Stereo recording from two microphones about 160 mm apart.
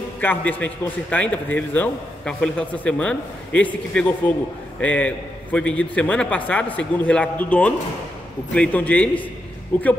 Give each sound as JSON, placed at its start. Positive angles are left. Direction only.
{"t": 0.2, "sound": "a man's voice", "side_deg": 10}